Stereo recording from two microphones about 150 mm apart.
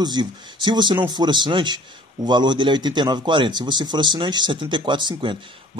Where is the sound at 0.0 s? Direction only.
30° right (ahead or behind).